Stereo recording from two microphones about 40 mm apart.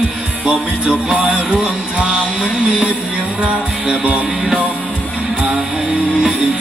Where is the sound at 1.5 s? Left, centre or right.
Centre.